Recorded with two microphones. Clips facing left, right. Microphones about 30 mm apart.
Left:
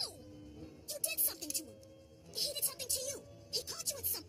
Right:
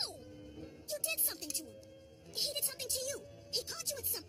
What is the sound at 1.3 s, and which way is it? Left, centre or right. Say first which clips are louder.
Speech: right 1 dB; centre.